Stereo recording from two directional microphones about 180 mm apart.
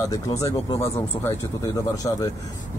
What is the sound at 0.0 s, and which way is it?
Speech, 20° left (ahead or behind).